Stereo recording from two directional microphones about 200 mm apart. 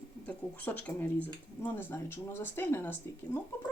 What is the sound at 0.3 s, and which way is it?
Speech, 5° left (ahead or behind).